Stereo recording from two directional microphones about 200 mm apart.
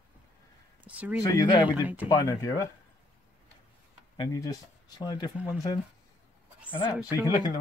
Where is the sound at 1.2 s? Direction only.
20° left (ahead or behind).